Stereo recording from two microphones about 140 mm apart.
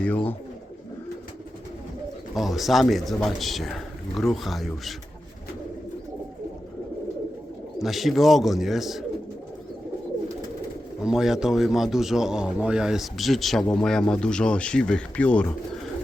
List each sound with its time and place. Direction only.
0.0 s speech: 10° left (ahead or behind)
2.3 s a man's voice: centre (ahead or behind)
7.8 s a man's voice: centre (ahead or behind)
11.0 s a man's voice: 5° right (ahead or behind)